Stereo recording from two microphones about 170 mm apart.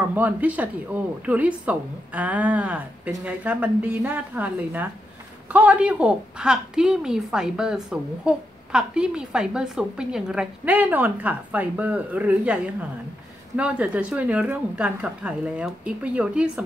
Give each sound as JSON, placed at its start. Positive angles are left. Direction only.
{"t": 0.1, "sound": "a woman's voice", "side_deg": -10}